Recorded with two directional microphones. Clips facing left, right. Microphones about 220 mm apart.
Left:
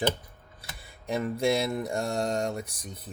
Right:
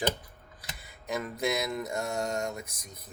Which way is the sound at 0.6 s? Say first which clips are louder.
Left 2 dB; 30° left (ahead or behind).